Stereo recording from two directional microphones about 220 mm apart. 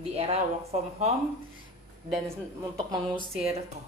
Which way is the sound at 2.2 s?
15° right (ahead or behind).